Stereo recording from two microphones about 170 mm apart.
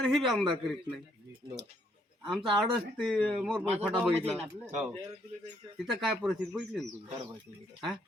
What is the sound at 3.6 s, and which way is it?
Speech, 10° right (ahead or behind).